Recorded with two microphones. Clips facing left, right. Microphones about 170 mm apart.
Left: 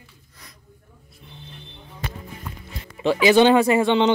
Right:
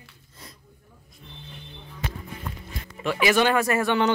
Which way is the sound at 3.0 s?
25° left (ahead or behind).